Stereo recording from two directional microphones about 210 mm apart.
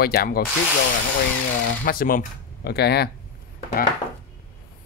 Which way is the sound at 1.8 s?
45° left (ahead or behind).